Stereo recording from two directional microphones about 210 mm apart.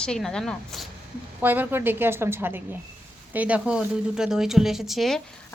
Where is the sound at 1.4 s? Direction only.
10° right (ahead or behind).